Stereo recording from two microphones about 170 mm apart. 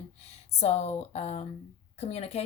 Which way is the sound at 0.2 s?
40° left (ahead or behind).